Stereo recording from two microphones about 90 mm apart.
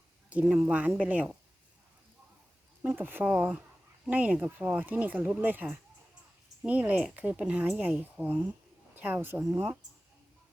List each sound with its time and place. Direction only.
0.4 s speech: 10° right (ahead or behind)
2.8 s a woman's voice: 20° right (ahead or behind)